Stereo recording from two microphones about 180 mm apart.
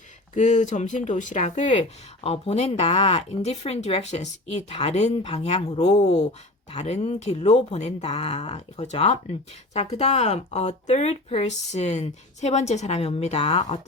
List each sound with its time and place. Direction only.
0.3 s speech: 45° left (ahead or behind)